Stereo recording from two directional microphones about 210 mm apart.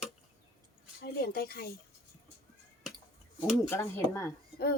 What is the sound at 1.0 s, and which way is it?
Speech, 50° left (ahead or behind).